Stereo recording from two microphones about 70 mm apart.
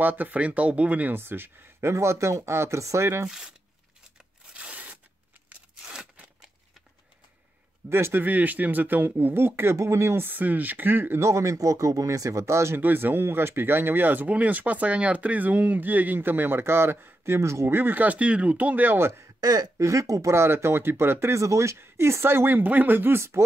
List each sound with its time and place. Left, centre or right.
0.0 s speech: right
3.3 s speech: centre
4.6 s a sound: centre
7.9 s speech: right
11.2 s speech: right
12.8 s speech: right
17.7 s speech: right
19.4 s speech: right